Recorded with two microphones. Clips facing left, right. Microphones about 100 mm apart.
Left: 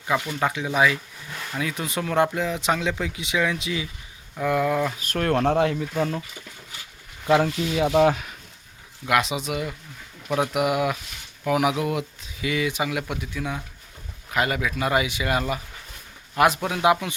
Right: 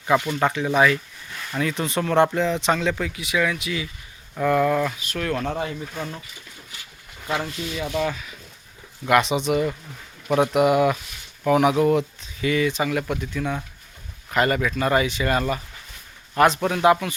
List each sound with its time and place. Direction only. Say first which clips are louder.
0.1 s speech: right 4 dB; centre (ahead or behind)
3.2 s speech: right 1 dB; 25° left (ahead or behind)
4.4 s speech: right 3 dB; 5° left (ahead or behind)
4.9 s speech: left 3 dB; 45° left (ahead or behind)
5.4 s speech: left 6 dB; 70° left (ahead or behind)
7.3 s speech: left 7 dB; 90° left
7.7 s speech: left 7 dB; 60° left (ahead or behind)
9.0 s speech: right 4 dB; centre (ahead or behind)